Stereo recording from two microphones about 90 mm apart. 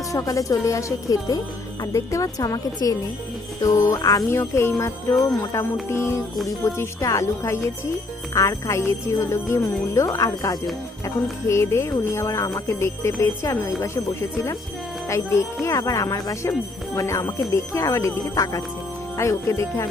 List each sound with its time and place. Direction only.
0.1 s speech: 40° left (ahead or behind)
4.3 s speech: 30° left (ahead or behind)
11.4 s speech: 30° left (ahead or behind)
15.1 s speech: 30° left (ahead or behind)